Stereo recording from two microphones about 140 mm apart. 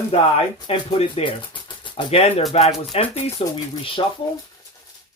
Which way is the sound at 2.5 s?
45° left (ahead or behind).